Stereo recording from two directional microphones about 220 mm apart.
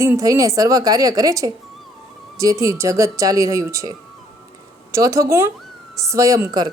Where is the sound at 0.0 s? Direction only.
15° right (ahead or behind).